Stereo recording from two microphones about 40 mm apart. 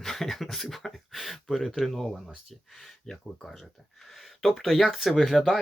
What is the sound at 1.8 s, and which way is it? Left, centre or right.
Speech, centre.